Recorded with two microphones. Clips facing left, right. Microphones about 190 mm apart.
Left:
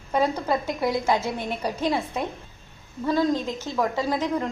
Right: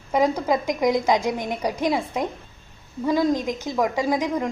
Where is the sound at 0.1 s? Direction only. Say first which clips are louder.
Right 3 dB; 15° right (ahead or behind).